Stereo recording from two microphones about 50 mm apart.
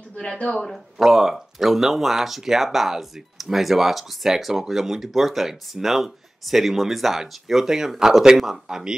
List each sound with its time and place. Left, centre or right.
0.3 s speech: centre
0.7 s speech: centre